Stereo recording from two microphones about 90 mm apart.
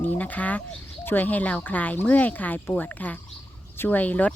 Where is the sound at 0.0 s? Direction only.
20° left (ahead or behind).